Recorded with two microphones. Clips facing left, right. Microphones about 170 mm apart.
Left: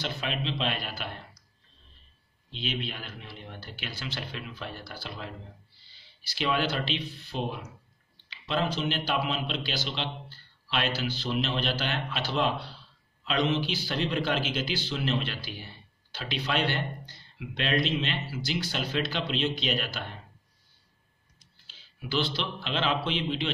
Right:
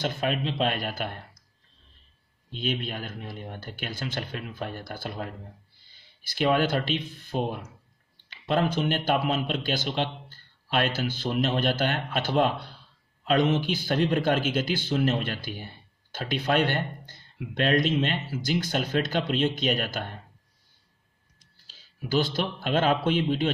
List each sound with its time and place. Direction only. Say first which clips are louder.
0.0 s speech: right 5 dB; 50° right (ahead or behind)
2.5 s speech: right 4 dB; 50° right (ahead or behind)
21.6 s a man's voice: right 4 dB; 40° right (ahead or behind)